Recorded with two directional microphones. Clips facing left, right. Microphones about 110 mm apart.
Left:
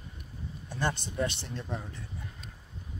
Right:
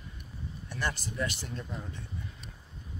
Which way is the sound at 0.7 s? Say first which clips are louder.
Left 3 dB; 20° left (ahead or behind).